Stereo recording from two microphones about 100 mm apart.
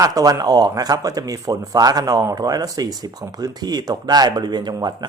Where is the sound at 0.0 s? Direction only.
40° right (ahead or behind).